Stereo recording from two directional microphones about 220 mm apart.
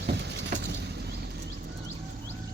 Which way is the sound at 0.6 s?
50° right (ahead or behind).